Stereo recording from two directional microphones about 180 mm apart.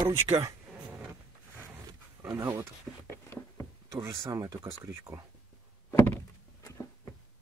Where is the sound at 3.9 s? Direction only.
15° right (ahead or behind).